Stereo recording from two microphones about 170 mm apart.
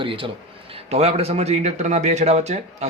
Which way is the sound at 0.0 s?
30° right (ahead or behind).